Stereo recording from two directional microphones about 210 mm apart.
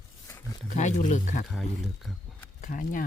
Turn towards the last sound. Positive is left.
turn(degrees=40)  # may be behind; listen again after turning